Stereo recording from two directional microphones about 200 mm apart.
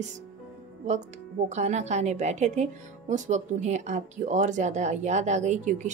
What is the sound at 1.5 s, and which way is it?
Speech, 35° right (ahead or behind).